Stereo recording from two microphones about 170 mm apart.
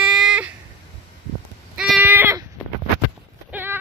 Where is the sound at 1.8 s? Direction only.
5° right (ahead or behind).